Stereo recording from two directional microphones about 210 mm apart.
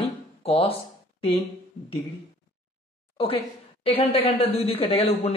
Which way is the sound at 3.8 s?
30° left (ahead or behind).